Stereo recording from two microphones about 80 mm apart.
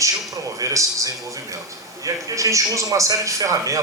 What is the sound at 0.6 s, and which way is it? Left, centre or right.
A man's voice, right.